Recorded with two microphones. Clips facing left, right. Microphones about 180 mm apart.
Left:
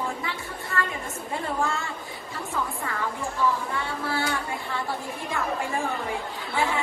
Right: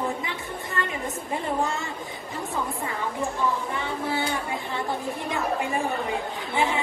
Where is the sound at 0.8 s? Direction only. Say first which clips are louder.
Left 1 dB; 20° right (ahead or behind).